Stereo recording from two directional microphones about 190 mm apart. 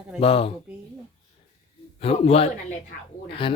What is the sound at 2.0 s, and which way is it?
A man's voice, 30° left (ahead or behind).